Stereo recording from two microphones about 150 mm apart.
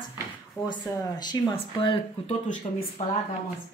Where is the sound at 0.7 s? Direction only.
30° left (ahead or behind).